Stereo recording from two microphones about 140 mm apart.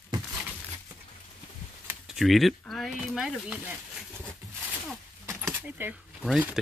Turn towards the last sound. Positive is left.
turn(degrees=-5)  # may be behind; listen again after turning